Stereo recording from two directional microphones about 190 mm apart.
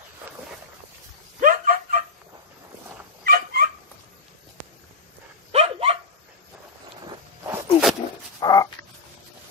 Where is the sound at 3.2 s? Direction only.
55° right (ahead or behind).